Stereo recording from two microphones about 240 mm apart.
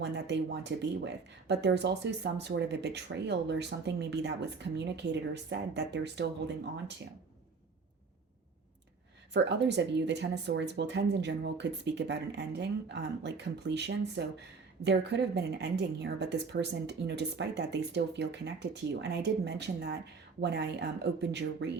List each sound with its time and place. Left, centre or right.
0.0 s speech: right
9.3 s speech: right